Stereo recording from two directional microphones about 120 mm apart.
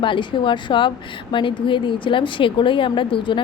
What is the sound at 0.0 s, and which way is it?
Speech, 45° left (ahead or behind).